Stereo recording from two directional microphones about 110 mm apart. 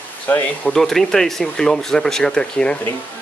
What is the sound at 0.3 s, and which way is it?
Speech, 15° left (ahead or behind).